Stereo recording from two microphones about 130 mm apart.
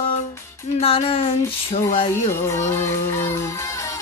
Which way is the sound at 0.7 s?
45° left (ahead or behind).